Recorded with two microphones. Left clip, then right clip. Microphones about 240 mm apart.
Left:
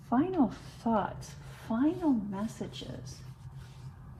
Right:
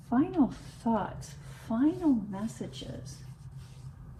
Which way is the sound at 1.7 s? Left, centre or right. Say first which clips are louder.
Right 1 dB; left.